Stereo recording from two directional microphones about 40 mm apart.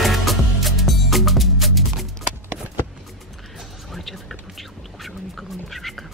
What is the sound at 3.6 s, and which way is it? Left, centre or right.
Music, centre.